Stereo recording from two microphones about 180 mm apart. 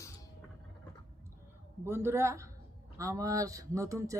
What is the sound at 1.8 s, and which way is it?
Speech, 15° right (ahead or behind).